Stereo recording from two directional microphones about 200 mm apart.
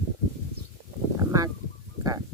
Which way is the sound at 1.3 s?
15° right (ahead or behind).